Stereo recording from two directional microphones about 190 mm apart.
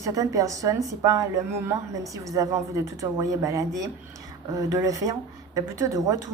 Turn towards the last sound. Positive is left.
turn(degrees=-15)  # may be behind; listen again after turning